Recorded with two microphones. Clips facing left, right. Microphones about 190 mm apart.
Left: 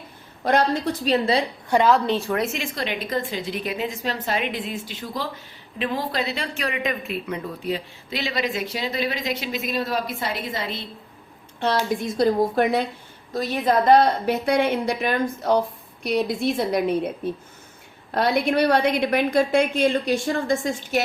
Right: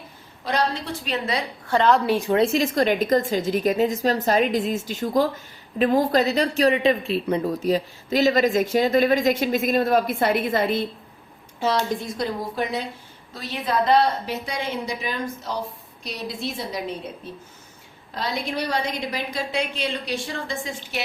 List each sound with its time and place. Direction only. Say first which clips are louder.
0.4 s a woman's voice: left 4 dB; 50° left (ahead or behind); by 1.5 s 30° left (ahead or behind)
1.6 s a woman's voice: even; 15° left (ahead or behind)
2.0 s a woman's voice: right 3 dB; 15° right (ahead or behind)
2.4 s speech: right 7 dB; 35° right (ahead or behind); by 10.8 s 50° right (ahead or behind)
11.6 s a woman's voice: even; 5° left (ahead or behind)
12.5 s a woman's voice: left 6 dB; 55° left (ahead or behind)
18.1 s a woman's voice: left 7 dB; 60° left (ahead or behind)